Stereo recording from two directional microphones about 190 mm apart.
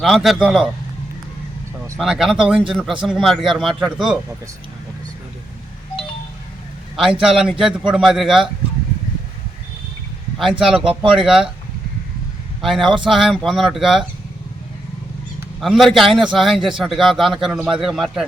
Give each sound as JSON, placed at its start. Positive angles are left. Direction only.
{"t": 0.0, "sound": "a man's voice", "side_deg": 0}
{"t": 2.0, "sound": "a man's voice", "side_deg": 0}
{"t": 7.2, "sound": "a man's voice", "side_deg": -5}
{"t": 10.3, "sound": "a man's voice", "side_deg": 0}
{"t": 12.6, "sound": "a man's voice", "side_deg": 0}
{"t": 15.6, "sound": "a man's voice", "side_deg": 0}